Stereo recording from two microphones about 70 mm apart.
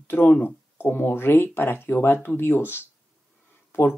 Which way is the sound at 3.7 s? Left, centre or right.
Left.